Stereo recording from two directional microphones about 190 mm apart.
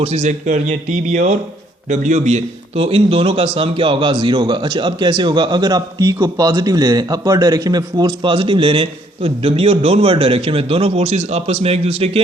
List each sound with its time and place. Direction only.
0.0 s a man's voice: 35° right (ahead or behind)